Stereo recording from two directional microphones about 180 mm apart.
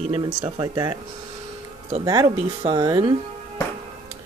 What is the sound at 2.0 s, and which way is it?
Speech, 20° right (ahead or behind).